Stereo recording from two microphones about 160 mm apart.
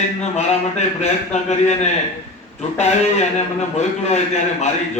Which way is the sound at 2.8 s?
45° left (ahead or behind).